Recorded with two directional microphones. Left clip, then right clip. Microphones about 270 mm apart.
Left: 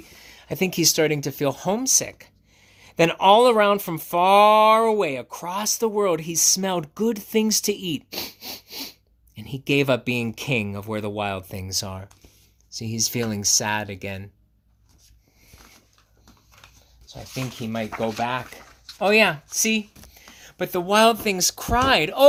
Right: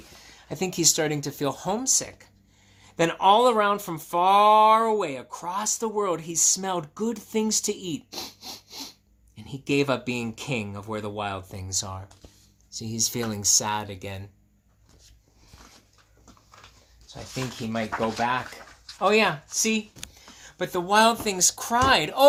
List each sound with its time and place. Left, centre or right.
0.2 s speech: left
17.1 s a sound: left
18.0 s speech: left